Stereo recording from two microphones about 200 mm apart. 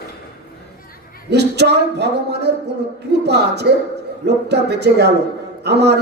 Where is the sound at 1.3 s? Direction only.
55° right (ahead or behind).